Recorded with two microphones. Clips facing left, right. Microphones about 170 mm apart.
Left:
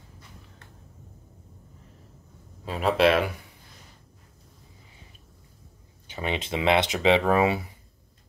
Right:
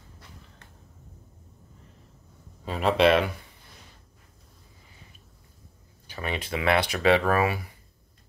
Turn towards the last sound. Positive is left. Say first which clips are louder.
# left 2 dB
turn(degrees=20)  # may be behind; listen again after turning